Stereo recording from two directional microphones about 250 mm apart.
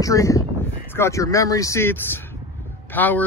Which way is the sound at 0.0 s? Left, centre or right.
Centre.